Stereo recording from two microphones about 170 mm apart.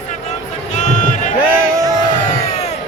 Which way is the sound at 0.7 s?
45° left (ahead or behind).